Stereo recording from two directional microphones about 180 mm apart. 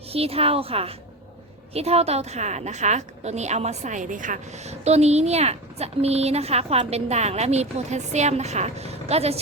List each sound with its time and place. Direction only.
0.1 s a woman's voice: 35° right (ahead or behind)